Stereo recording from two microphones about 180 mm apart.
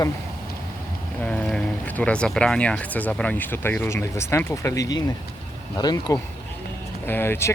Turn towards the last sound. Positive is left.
turn(degrees=15)  # may be behind; listen again after turning